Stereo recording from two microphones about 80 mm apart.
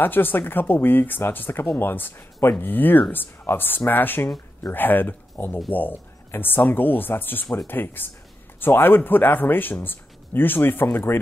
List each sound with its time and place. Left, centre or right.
0.0 s speech: left